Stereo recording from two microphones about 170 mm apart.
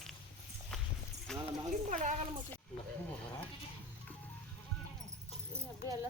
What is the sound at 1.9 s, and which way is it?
Speech, 45° right (ahead or behind).